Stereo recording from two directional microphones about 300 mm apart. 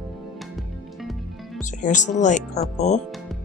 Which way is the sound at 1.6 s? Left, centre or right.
Left.